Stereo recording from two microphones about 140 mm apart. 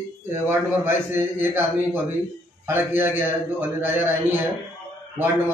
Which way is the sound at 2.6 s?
15° right (ahead or behind).